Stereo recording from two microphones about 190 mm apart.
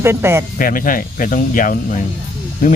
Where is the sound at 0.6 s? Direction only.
45° left (ahead or behind).